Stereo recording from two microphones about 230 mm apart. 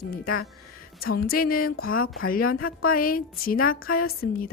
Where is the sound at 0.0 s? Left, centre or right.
Left.